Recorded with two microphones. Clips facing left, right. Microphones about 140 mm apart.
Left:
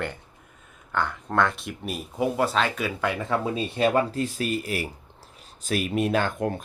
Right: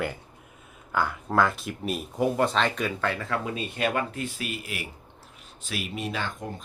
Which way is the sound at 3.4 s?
30° left (ahead or behind).